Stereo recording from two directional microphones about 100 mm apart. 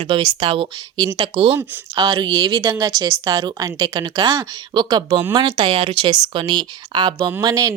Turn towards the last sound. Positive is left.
turn(degrees=-35)  # may be behind; listen again after turning